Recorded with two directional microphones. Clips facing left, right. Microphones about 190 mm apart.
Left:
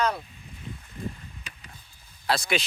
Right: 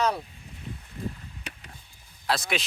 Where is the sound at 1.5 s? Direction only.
70° right (ahead or behind).